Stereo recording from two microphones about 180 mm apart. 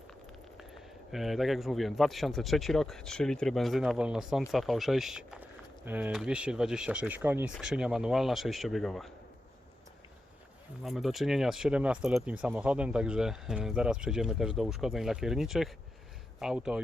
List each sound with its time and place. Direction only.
1.1 s speech: centre (ahead or behind)
10.8 s speech: centre (ahead or behind)